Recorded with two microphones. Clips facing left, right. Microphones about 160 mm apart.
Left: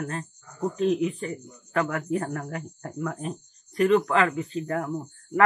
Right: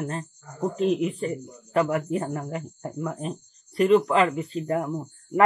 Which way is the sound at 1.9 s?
20° right (ahead or behind).